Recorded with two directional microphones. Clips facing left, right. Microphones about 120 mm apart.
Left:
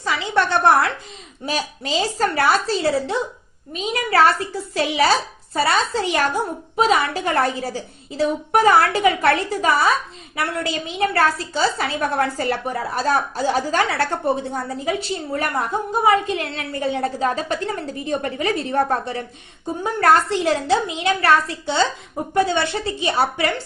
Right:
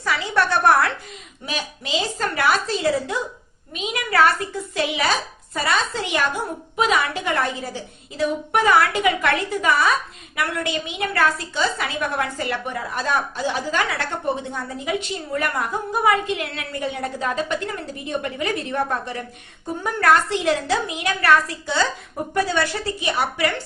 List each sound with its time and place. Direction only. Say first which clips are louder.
0.0 s a woman's voice: left 1 dB; 25° left (ahead or behind)
1.5 s a woman's voice: left 3 dB; 40° left (ahead or behind)